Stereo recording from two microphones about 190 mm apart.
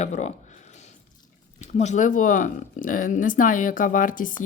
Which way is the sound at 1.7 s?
40° left (ahead or behind).